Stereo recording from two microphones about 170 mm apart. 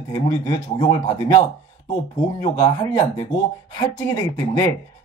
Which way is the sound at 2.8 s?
15° left (ahead or behind).